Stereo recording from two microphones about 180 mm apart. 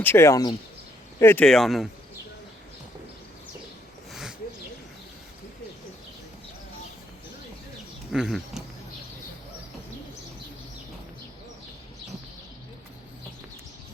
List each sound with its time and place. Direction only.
0.0 s speech: 15° left (ahead or behind)
4.1 s a sound: centre (ahead or behind)
8.1 s speech: 5° right (ahead or behind)